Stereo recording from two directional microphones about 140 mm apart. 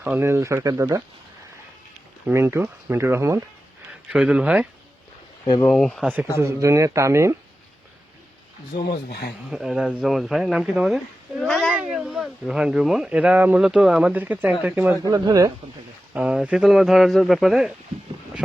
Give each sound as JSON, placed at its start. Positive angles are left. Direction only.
{"t": 0.0, "sound": "speech", "side_deg": -15}
{"t": 2.2, "sound": "speech", "side_deg": -20}
{"t": 4.1, "sound": "speech", "side_deg": -10}
{"t": 5.6, "sound": "speech", "side_deg": 5}
{"t": 6.3, "sound": "speech", "side_deg": -20}
{"t": 8.8, "sound": "speech", "side_deg": 90}
{"t": 9.5, "sound": "speech", "side_deg": -5}
{"t": 15.0, "sound": "speech", "side_deg": -25}
{"t": 16.1, "sound": "speech", "side_deg": -5}